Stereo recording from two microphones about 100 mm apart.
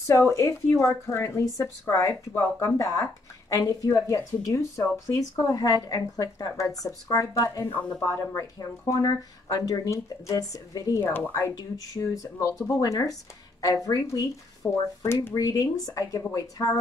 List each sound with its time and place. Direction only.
0.0 s speech: 25° left (ahead or behind)
11.0 s speech: 20° left (ahead or behind)
11.3 s speech: 35° left (ahead or behind)
14.6 s speech: 20° left (ahead or behind)
15.2 s speech: 35° left (ahead or behind)